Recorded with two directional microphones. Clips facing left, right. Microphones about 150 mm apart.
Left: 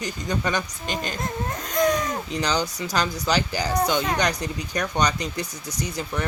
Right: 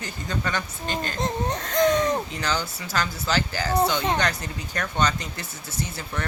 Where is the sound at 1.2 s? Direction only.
25° right (ahead or behind).